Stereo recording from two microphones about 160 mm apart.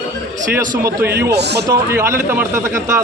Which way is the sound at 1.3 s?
90° right.